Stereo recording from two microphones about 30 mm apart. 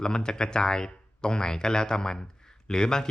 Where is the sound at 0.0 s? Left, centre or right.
Left.